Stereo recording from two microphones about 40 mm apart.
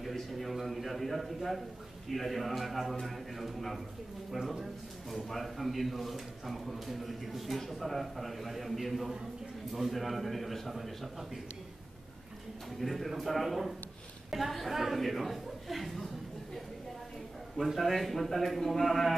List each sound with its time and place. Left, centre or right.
0.1 s a man's voice: centre
5.1 s a man's voice: centre
12.8 s a man's voice: centre
17.6 s a man's voice: centre